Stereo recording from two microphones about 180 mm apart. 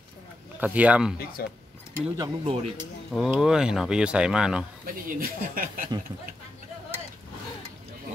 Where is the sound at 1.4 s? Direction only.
60° left (ahead or behind).